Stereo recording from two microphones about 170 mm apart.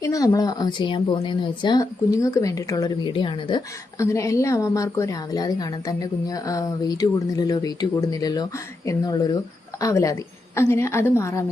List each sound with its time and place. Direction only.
0.0 s a woman's voice: 20° left (ahead or behind)